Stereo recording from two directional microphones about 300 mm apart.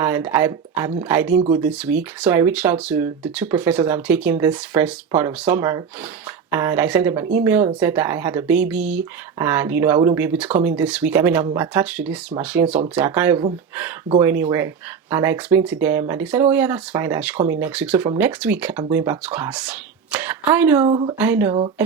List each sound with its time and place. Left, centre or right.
0.0 s speech: centre
20.8 s speech: centre
21.2 s speech: centre
21.5 s speech: centre